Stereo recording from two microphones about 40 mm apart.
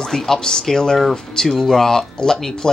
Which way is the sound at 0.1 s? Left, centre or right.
Centre.